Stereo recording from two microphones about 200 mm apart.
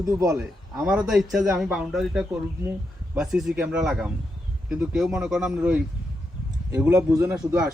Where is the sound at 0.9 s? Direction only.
5° right (ahead or behind).